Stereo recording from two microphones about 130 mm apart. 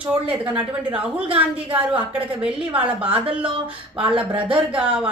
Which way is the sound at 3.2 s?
45° right (ahead or behind).